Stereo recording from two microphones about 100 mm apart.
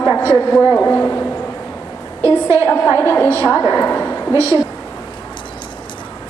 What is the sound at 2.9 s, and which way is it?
A woman's voice, 25° left (ahead or behind).